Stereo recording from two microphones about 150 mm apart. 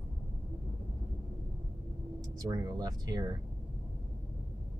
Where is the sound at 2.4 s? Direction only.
25° right (ahead or behind).